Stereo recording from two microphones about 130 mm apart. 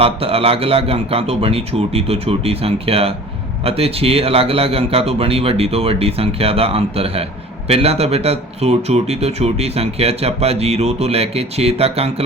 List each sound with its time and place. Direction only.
0.0 s speech: 45° right (ahead or behind)